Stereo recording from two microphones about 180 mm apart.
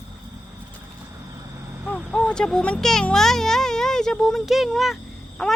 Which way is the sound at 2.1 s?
5° left (ahead or behind).